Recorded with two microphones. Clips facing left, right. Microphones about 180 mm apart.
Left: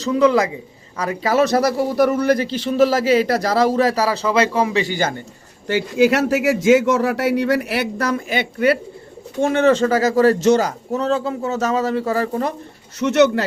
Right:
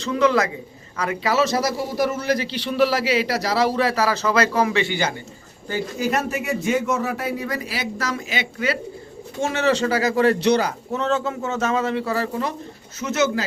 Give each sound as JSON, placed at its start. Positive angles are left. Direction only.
{"t": 0.2, "sound": "speech", "side_deg": 30}
{"t": 1.2, "sound": "a man's voice", "side_deg": 50}
{"t": 5.6, "sound": "a man's voice", "side_deg": 85}
{"t": 13.0, "sound": "speech", "side_deg": 65}